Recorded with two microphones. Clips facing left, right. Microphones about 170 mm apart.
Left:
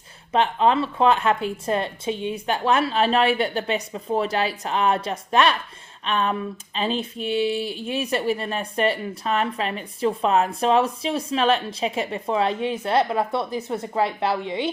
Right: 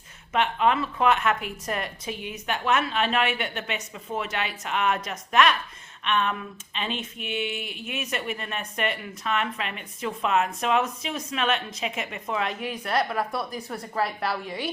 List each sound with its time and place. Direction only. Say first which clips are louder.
0.3 s a woman's voice: left 4 dB; 30° left (ahead or behind)